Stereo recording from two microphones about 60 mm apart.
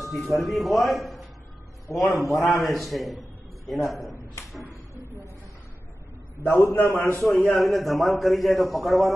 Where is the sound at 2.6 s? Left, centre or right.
Centre.